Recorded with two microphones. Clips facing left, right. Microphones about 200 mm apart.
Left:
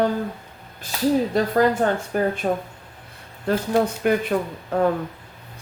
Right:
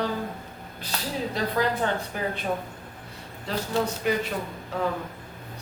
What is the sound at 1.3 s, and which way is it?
A woman's voice, 50° left (ahead or behind).